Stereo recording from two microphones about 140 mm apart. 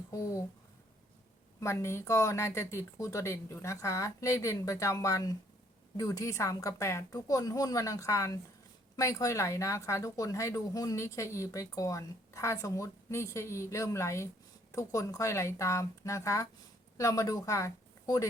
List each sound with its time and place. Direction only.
0.1 s speech: 25° left (ahead or behind)
1.6 s speech: 20° left (ahead or behind)